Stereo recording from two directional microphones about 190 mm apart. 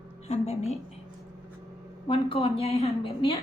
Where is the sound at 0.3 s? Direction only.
35° left (ahead or behind).